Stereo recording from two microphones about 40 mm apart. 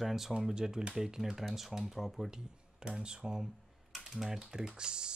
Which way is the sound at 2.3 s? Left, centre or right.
Centre.